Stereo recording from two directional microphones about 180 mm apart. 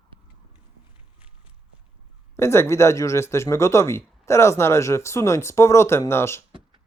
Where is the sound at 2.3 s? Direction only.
15° left (ahead or behind).